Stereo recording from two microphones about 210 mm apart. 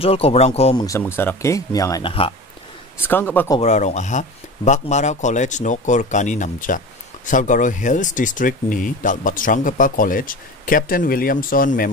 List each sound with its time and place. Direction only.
0.0 s speech: 30° left (ahead or behind)
0.8 s speech: 15° left (ahead or behind)
3.0 s speech: 10° left (ahead or behind)
3.6 s speech: 35° left (ahead or behind)